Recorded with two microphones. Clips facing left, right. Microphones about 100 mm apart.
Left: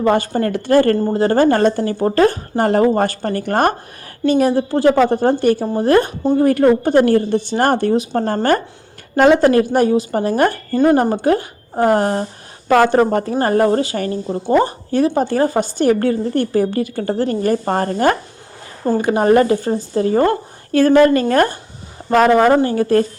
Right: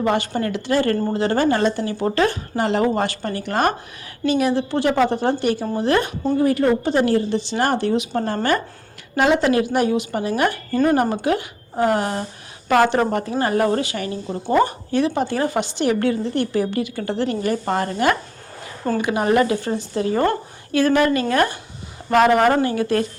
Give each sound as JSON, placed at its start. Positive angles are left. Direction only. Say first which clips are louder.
{"t": 0.0, "sound": "a woman's voice", "louder": "left 5 dB", "side_deg": 40}
{"t": 6.4, "sound": "a woman's voice", "louder": "left 5 dB", "side_deg": 50}
{"t": 10.8, "sound": "speech", "louder": "left 4 dB", "side_deg": 30}